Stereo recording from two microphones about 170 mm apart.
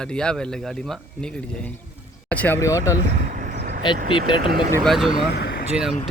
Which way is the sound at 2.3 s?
10° left (ahead or behind).